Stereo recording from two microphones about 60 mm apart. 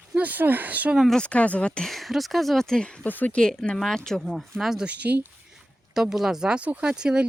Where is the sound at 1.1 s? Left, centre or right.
Centre.